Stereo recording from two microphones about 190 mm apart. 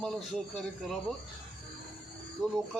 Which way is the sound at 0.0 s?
Centre (ahead or behind).